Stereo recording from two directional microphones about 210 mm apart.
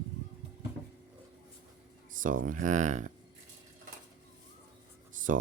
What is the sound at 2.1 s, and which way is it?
Speech, 40° right (ahead or behind).